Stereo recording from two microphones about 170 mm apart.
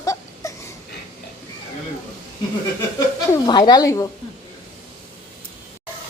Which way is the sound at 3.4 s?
25° left (ahead or behind).